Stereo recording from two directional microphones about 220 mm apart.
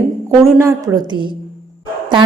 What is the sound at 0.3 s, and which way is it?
A woman's voice, 10° right (ahead or behind).